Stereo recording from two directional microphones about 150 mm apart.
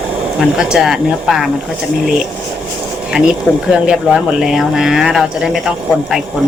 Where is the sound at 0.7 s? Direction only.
5° right (ahead or behind).